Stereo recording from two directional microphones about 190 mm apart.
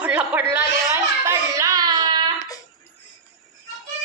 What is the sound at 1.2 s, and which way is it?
Child singing, 15° right (ahead or behind).